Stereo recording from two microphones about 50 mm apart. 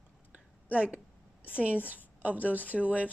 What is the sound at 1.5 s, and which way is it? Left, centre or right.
Speech, right.